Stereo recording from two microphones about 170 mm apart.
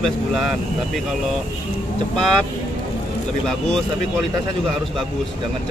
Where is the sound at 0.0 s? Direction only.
Centre (ahead or behind).